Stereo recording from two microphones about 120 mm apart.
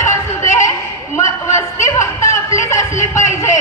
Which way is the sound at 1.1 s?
25° left (ahead or behind).